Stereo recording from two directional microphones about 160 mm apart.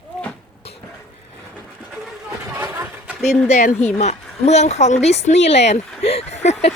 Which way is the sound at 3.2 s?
45° left (ahead or behind).